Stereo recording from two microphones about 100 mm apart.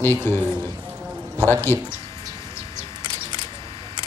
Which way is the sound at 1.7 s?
25° left (ahead or behind).